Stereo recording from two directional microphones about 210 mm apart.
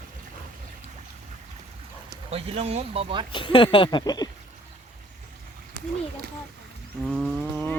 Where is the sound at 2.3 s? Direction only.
30° right (ahead or behind).